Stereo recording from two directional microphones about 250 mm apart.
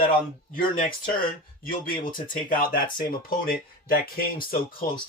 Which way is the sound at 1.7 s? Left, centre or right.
Left.